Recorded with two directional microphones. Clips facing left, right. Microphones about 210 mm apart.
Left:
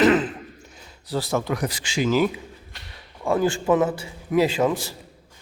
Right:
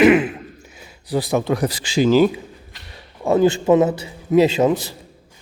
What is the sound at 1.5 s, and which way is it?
A man's voice, 35° right (ahead or behind).